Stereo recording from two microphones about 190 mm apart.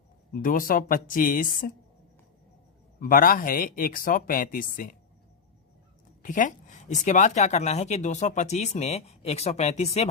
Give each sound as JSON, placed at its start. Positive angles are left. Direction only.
{"t": 0.4, "sound": "speech", "side_deg": 45}
{"t": 3.0, "sound": "speech", "side_deg": 50}
{"t": 6.2, "sound": "speech", "side_deg": 45}